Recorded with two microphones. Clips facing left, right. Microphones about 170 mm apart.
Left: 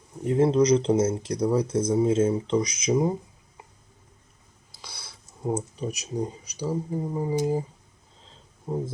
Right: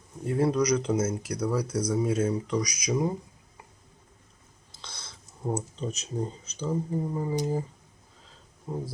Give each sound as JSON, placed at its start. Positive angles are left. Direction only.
{"t": 0.3, "sound": "speech", "side_deg": 20}
{"t": 4.8, "sound": "speech", "side_deg": 10}
{"t": 8.2, "sound": "a sound", "side_deg": 20}